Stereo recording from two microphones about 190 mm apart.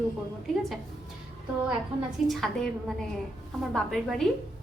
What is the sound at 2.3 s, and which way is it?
A woman's voice, centre (ahead or behind).